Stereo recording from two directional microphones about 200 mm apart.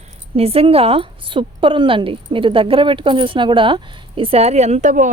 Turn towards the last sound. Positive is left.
turn(degrees=-40)  # may be behind; listen again after turning